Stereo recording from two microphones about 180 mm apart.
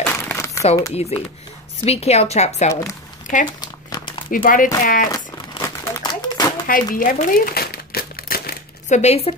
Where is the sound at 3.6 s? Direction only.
25° left (ahead or behind).